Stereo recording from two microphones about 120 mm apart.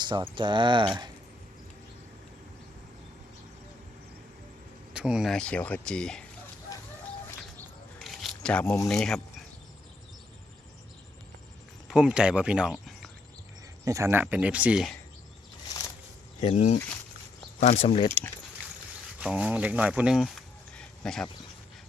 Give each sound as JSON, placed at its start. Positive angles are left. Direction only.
{"t": 0.0, "sound": "speech", "side_deg": -40}
{"t": 4.9, "sound": "speech", "side_deg": -5}
{"t": 5.3, "sound": "speech", "side_deg": 10}
{"t": 7.9, "sound": "a sound", "side_deg": 0}
{"t": 8.9, "sound": "speech", "side_deg": 5}
{"t": 11.9, "sound": "speech", "side_deg": -5}
{"t": 13.8, "sound": "speech", "side_deg": -25}
{"t": 16.4, "sound": "speech", "side_deg": 65}
{"t": 19.2, "sound": "speech", "side_deg": -10}
{"t": 20.7, "sound": "a sound", "side_deg": 5}